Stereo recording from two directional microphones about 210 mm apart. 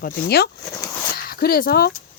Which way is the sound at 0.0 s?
50° left (ahead or behind).